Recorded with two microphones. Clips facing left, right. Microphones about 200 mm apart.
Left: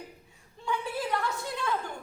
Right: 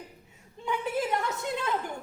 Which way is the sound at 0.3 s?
20° right (ahead or behind).